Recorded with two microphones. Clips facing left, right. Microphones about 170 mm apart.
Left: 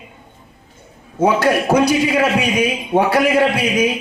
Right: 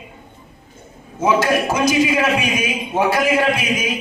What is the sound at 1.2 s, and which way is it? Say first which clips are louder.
A man's voice: left 2 dB; 65° left (ahead or behind).